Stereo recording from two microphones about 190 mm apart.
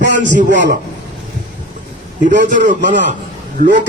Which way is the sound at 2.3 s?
40° right (ahead or behind).